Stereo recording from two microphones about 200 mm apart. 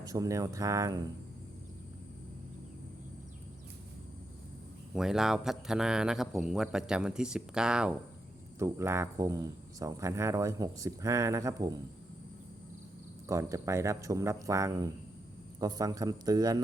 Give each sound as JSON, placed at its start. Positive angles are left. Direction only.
{"t": 0.0, "sound": "speech", "side_deg": -20}
{"t": 4.9, "sound": "speech", "side_deg": 0}
{"t": 13.2, "sound": "a man's voice", "side_deg": -15}